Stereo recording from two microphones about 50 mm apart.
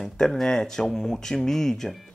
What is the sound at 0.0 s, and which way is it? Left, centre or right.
Speech, centre.